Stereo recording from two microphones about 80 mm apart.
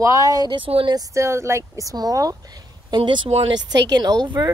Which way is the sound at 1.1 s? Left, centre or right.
Right.